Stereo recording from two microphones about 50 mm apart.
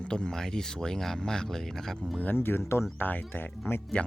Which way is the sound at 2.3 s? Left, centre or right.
Left.